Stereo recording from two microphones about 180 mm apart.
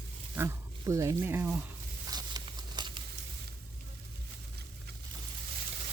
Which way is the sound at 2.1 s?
20° right (ahead or behind).